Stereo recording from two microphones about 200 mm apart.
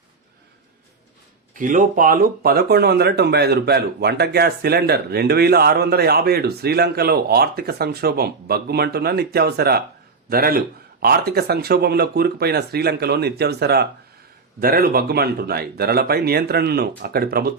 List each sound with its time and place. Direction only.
1.5 s speech: 40° right (ahead or behind)